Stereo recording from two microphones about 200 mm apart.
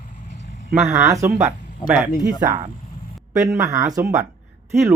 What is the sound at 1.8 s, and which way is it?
Speech, 25° left (ahead or behind).